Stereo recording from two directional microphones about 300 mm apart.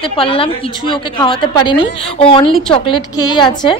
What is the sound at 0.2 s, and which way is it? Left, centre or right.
A woman's voice, centre.